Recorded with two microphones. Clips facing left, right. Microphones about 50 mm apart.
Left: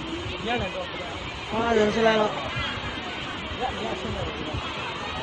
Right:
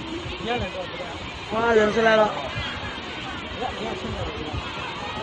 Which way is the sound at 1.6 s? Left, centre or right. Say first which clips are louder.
Right 2 dB; right.